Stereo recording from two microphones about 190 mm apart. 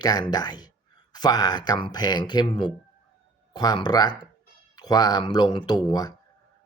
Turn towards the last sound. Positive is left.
turn(degrees=20)  # may be behind; listen again after turning